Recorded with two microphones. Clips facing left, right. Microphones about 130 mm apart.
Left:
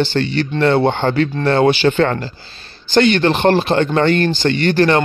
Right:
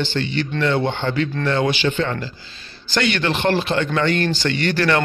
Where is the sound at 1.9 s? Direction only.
55° left (ahead or behind).